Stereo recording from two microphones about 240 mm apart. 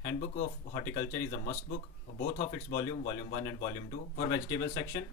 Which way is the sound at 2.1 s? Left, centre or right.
Left.